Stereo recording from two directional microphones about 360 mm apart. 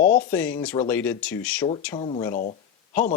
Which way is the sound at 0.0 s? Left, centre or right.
Left.